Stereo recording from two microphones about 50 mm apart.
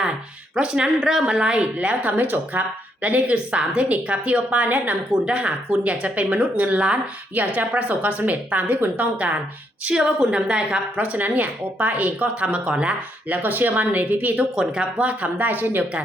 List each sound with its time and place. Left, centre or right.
0.5 s a woman's voice: centre
1.8 s speech: right
5.2 s speech: right
9.9 s a woman's voice: centre
10.9 s speech: right
13.3 s speech: right
14.5 s a woman's voice: centre
14.9 s speech: right